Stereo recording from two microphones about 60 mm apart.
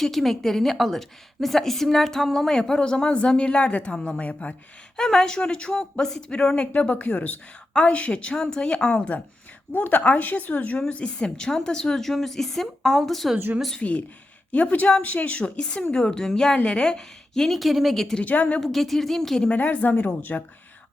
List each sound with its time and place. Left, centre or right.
0.0 s a woman's voice: centre; by 4.5 s left
4.9 s a woman's voice: centre
14.5 s a woman's voice: left; by 18.2 s centre
18.2 s speech: left
18.6 s a woman's voice: centre
19.5 s speech: left